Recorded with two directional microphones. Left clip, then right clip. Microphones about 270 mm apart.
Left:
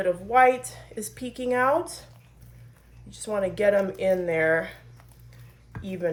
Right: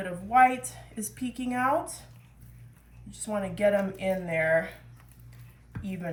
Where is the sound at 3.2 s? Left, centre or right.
Left.